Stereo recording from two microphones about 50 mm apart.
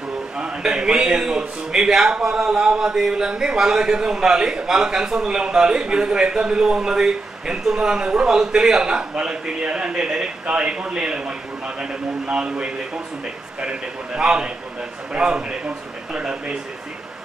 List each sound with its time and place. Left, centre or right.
0.4 s a man's voice: centre